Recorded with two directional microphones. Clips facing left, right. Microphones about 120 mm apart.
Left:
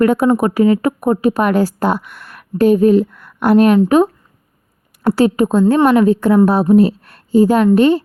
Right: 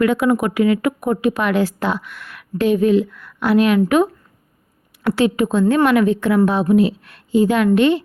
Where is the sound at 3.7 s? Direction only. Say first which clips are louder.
Left 4 dB; 35° left (ahead or behind).